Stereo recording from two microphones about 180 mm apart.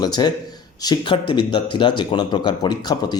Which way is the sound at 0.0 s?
20° left (ahead or behind).